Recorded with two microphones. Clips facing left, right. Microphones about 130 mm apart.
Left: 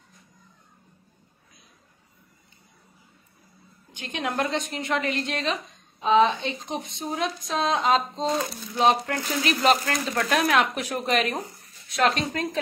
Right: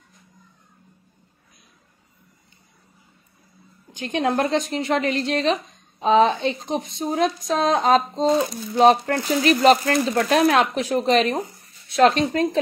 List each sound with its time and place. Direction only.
3.9 s a woman's voice: 35° right (ahead or behind)